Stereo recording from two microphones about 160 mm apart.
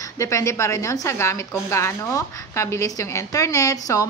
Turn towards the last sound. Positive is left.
turn(degrees=20)  # may be behind; listen again after turning